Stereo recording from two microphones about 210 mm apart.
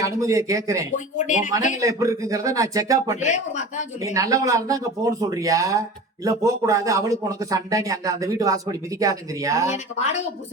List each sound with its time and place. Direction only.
0.0 s speech: 15° right (ahead or behind)
3.2 s speech: 35° left (ahead or behind)
4.1 s speech: 15° right (ahead or behind)
9.6 s speech: 35° left (ahead or behind)